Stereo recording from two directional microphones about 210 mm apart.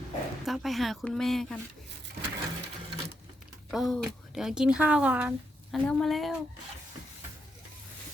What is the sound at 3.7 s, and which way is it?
A woman's voice, centre (ahead or behind).